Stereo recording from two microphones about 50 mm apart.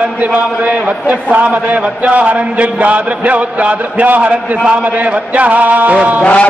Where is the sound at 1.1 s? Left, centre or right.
Right.